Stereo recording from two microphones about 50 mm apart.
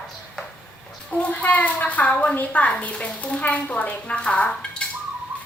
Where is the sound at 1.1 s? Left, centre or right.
Left.